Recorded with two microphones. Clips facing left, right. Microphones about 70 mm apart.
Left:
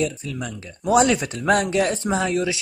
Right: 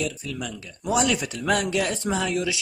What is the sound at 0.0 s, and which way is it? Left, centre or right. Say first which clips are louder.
Speech: left 4 dB; left.